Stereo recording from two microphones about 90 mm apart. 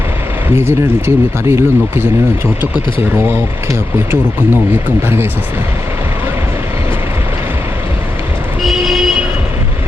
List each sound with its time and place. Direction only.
0.4 s speech: 25° right (ahead or behind)
3.2 s speech: 25° right (ahead or behind)
8.6 s vehicle: centre (ahead or behind)